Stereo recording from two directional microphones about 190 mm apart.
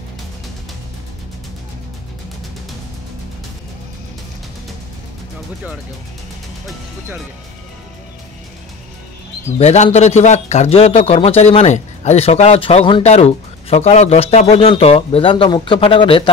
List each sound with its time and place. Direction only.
9.6 s speech: 35° left (ahead or behind)